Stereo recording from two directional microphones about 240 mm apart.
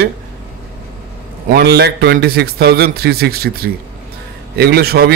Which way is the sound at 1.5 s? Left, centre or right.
Right.